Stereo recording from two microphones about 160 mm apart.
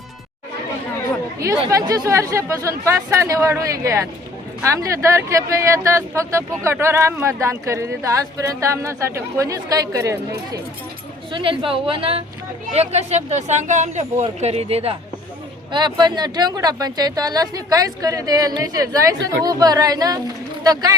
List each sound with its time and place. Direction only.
1.4 s speech: 20° right (ahead or behind)
11.3 s a woman's voice: 35° right (ahead or behind)
15.7 s speech: 30° right (ahead or behind)